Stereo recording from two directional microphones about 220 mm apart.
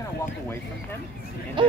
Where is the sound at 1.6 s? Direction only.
20° right (ahead or behind).